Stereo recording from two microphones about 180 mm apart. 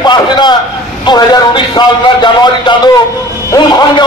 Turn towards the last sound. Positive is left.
turn(degrees=25)  # may be behind; listen again after turning